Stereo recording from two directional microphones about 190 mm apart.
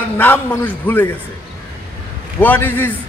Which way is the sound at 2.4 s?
10° left (ahead or behind).